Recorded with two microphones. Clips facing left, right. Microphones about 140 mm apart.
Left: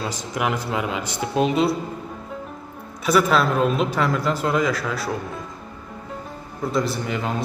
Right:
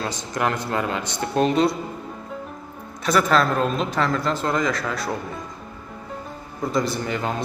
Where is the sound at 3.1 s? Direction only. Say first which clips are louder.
Left 1 dB; 5° left (ahead or behind).